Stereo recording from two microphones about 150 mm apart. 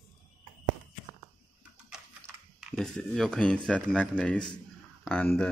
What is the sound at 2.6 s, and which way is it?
Speech, centre (ahead or behind).